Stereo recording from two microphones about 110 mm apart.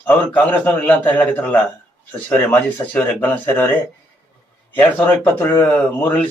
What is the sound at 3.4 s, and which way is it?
A man's voice, 20° left (ahead or behind).